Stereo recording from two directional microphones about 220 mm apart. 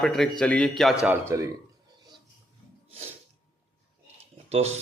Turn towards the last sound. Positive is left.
turn(degrees=-30)  # may be behind; listen again after turning